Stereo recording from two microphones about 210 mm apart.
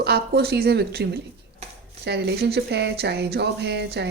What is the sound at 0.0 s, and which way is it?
Speech, 50° right (ahead or behind).